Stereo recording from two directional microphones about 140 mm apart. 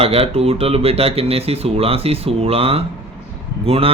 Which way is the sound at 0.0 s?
45° right (ahead or behind).